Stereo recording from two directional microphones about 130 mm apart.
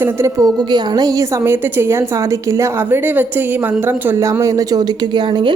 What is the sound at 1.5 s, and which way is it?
Speech, 20° right (ahead or behind).